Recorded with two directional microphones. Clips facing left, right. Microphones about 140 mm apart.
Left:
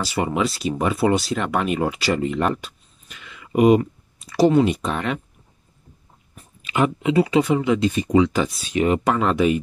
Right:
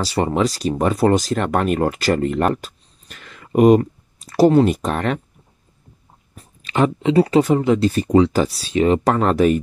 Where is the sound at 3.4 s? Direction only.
45° right (ahead or behind).